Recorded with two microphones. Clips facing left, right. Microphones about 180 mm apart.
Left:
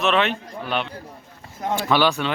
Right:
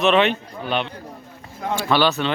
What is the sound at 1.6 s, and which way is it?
Speech, 15° left (ahead or behind).